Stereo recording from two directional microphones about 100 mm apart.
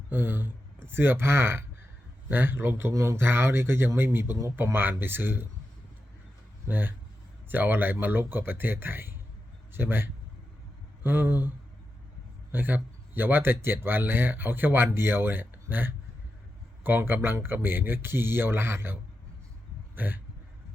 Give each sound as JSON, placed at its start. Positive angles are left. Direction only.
{"t": 0.1, "sound": "speech", "side_deg": -20}
{"t": 6.7, "sound": "speech", "side_deg": -20}
{"t": 20.0, "sound": "a sound", "side_deg": -15}